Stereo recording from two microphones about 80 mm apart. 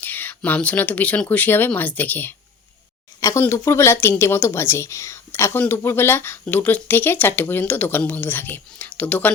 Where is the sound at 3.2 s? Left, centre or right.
Left.